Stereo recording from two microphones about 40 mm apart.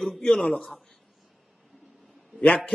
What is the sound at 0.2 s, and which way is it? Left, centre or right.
Speech, centre.